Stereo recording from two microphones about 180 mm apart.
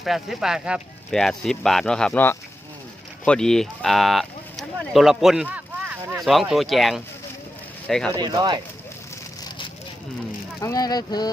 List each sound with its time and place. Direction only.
0.0 s speech: centre (ahead or behind)
8.1 s speech: 20° right (ahead or behind)
10.6 s speech: 20° left (ahead or behind)